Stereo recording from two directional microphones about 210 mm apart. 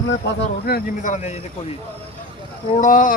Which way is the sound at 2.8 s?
40° left (ahead or behind).